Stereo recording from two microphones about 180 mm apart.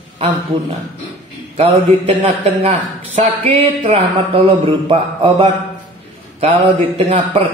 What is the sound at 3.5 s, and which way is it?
Speech, 30° right (ahead or behind).